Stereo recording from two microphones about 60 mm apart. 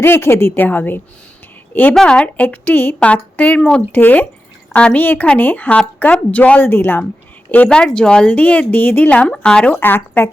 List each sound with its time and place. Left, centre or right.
0.0 s a woman's voice: left
2.0 s a woman's voice: centre; by 2.9 s left
3.0 s a woman's voice: left
6.6 s a woman's voice: left
7.7 s a woman's voice: centre
9.2 s speech: centre
9.7 s a woman's voice: left